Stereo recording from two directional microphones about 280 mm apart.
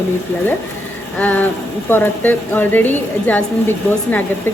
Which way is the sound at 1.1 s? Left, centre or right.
Centre.